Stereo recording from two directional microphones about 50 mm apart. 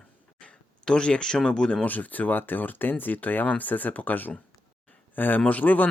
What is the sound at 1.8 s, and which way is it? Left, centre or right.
Speech, left.